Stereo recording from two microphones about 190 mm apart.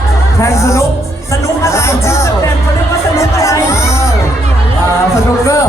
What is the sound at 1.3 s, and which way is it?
Music, 15° left (ahead or behind).